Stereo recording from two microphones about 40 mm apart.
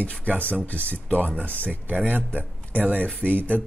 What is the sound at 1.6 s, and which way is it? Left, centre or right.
Speech, right.